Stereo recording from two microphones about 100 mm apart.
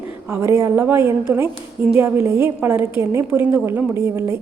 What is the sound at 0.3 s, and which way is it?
A woman's voice, 25° right (ahead or behind).